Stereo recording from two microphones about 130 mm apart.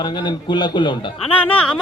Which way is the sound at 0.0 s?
35° left (ahead or behind).